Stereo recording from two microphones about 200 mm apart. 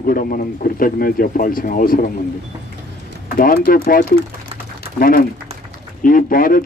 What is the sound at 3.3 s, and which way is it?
A man's voice, 45° left (ahead or behind).